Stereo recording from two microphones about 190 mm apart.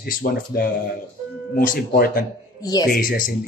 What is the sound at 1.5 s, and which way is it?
Speech, 50° left (ahead or behind).